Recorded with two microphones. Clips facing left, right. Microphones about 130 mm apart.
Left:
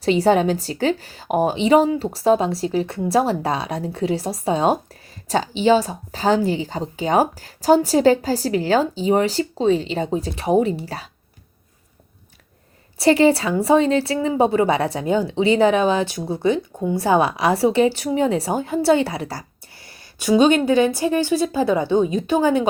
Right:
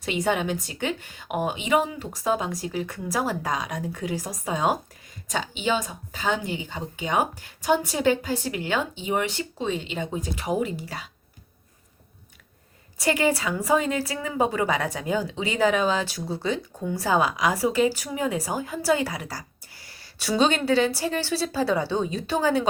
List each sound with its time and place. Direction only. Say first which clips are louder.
0.0 s a woman's voice: left 9 dB; 35° left (ahead or behind)
13.0 s a woman's voice: left 8 dB; 30° left (ahead or behind)